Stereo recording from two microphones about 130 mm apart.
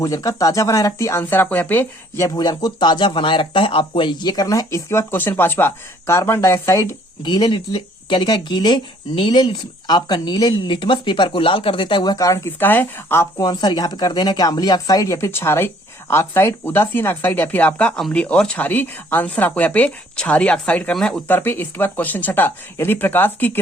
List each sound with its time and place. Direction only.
0.0 s speech: 25° left (ahead or behind)
7.3 s speech: 35° left (ahead or behind); by 13.2 s 15° left (ahead or behind)
13.4 s speech: 35° left (ahead or behind); by 23.6 s 15° left (ahead or behind)